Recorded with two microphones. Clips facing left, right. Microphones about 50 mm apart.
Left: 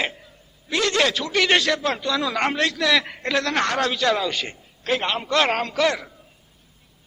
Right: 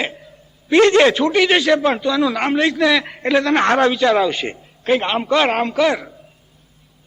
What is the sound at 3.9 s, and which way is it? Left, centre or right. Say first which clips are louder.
A man's voice: right 6 dB; centre.